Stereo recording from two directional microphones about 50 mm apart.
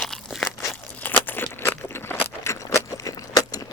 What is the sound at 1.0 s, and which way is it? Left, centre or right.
Crunch, left.